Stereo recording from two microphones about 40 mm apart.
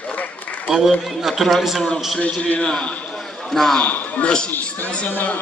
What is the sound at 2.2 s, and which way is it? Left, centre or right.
Speech, left.